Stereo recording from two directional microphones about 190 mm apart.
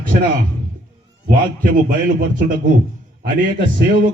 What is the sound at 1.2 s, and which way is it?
Speech, 45° right (ahead or behind).